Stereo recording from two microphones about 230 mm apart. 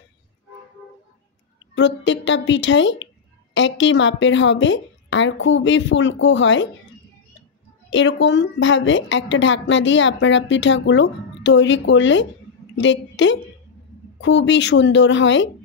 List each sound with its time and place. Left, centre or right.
1.8 s a woman's voice: left
7.9 s a woman's voice: left